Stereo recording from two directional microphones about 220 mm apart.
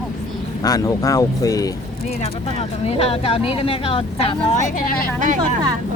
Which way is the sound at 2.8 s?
25° left (ahead or behind).